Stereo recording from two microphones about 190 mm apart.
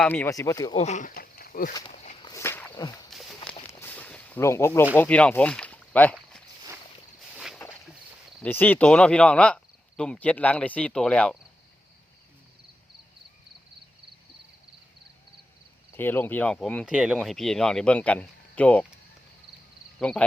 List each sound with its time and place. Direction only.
0.0 s speech: 10° left (ahead or behind)
0.8 s speech: 40° left (ahead or behind)
2.2 s walk: 15° left (ahead or behind)
3.1 s a sound: centre (ahead or behind)
3.7 s a sound: 10° left (ahead or behind)
4.9 s speech: 5° left (ahead or behind)
7.3 s a sound: 5° right (ahead or behind)
8.4 s speech: 10° left (ahead or behind)
15.9 s speech: 10° left (ahead or behind)
20.0 s speech: 5° left (ahead or behind)